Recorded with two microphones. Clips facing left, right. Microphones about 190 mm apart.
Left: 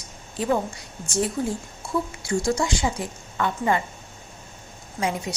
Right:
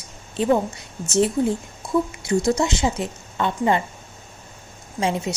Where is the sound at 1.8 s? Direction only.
15° right (ahead or behind).